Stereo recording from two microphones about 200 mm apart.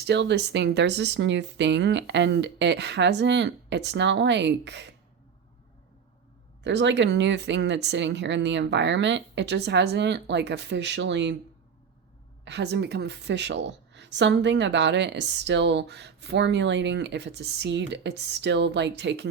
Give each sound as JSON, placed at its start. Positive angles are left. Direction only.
{"t": 0.0, "sound": "a woman's voice", "side_deg": -60}
{"t": 6.6, "sound": "a woman's voice", "side_deg": -60}
{"t": 12.5, "sound": "a woman's voice", "side_deg": -60}